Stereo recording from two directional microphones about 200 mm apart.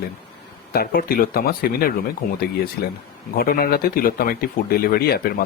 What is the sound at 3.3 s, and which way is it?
Speech, 50° left (ahead or behind).